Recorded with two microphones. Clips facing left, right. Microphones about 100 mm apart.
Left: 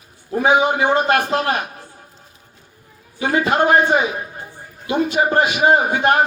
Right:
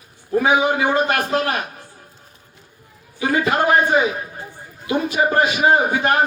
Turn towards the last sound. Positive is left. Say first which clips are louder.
# left 1 dB
turn(degrees=25)  # may be behind; listen again after turning